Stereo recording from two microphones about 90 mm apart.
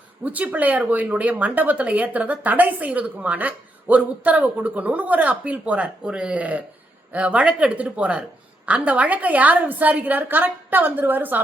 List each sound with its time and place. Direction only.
0.3 s a woman's voice: 20° right (ahead or behind)